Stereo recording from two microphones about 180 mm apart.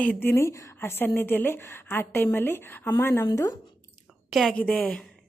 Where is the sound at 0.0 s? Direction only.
10° left (ahead or behind).